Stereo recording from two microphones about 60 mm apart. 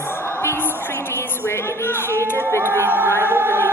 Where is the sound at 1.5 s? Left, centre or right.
Left.